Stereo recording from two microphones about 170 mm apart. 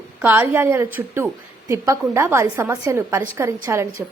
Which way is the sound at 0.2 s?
10° right (ahead or behind).